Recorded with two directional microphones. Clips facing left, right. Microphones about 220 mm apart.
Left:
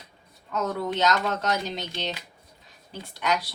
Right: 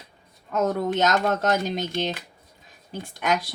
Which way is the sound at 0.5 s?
50° right (ahead or behind).